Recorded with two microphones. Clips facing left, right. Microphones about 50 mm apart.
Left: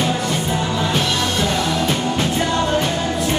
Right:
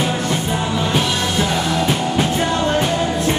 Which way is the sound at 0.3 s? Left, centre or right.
Centre.